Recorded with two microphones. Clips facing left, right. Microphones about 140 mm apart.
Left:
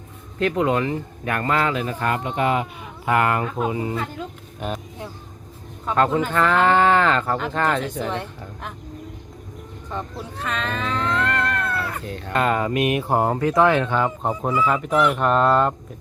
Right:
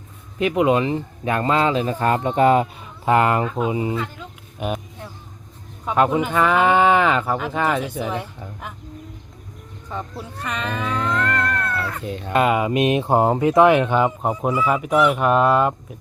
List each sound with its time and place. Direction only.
0.3 s speech: 15° right (ahead or behind); by 2.6 s 35° right (ahead or behind)
3.1 s speech: 25° right (ahead or behind)
5.8 s speech: 15° right (ahead or behind)
9.9 s speech: 10° right (ahead or behind)